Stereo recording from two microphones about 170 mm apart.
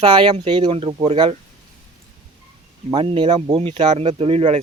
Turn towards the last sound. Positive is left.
turn(degrees=-35)  # may be behind; listen again after turning